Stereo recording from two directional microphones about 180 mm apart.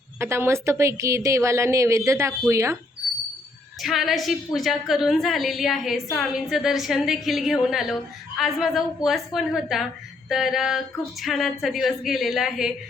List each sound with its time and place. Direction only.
0.2 s a woman's voice: 15° right (ahead or behind)
3.8 s a woman's voice: centre (ahead or behind)